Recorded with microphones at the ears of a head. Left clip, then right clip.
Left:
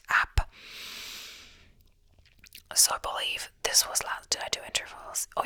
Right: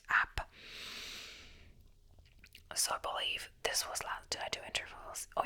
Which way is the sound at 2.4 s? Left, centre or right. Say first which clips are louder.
Left 12 dB; left.